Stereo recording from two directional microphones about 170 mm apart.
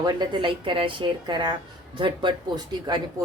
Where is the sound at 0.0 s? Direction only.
25° right (ahead or behind).